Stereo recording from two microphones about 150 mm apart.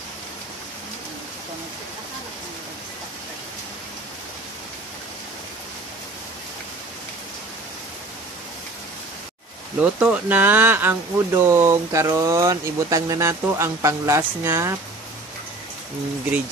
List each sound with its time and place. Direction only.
9.8 s speech: 10° right (ahead or behind)